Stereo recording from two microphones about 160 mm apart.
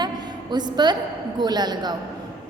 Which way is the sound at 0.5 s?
25° right (ahead or behind).